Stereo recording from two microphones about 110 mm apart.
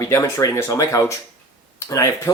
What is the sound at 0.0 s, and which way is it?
Speech, 30° left (ahead or behind).